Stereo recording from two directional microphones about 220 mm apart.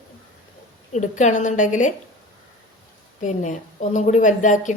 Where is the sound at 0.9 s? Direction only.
35° left (ahead or behind).